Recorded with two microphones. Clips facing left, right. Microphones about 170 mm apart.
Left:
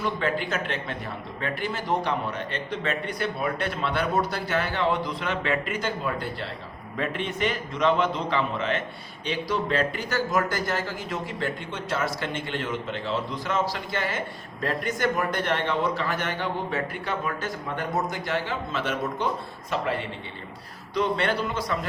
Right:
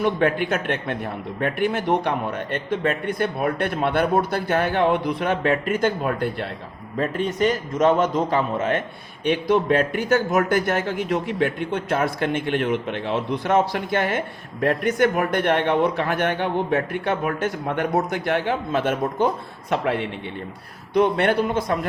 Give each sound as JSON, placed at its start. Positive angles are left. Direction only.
{"t": 0.0, "sound": "a man's voice", "side_deg": -60}
{"t": 6.9, "sound": "a man's voice", "side_deg": -40}
{"t": 19.7, "sound": "a man's voice", "side_deg": -65}